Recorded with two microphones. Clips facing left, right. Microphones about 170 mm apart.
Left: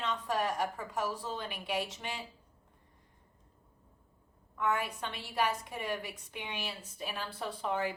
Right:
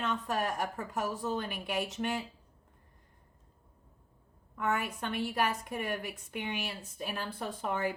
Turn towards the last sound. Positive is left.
turn(degrees=-50)  # may be behind; listen again after turning